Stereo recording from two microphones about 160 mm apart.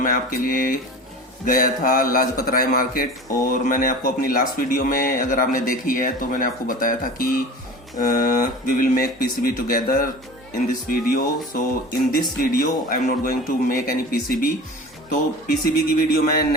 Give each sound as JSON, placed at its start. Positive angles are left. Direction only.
{"t": 0.0, "sound": "speech", "side_deg": 60}
{"t": 15.6, "sound": "speech", "side_deg": 65}